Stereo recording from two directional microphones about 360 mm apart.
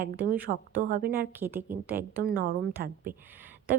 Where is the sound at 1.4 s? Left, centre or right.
Centre.